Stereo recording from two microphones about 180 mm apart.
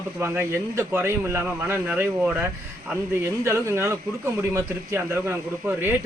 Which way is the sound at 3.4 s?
15° right (ahead or behind).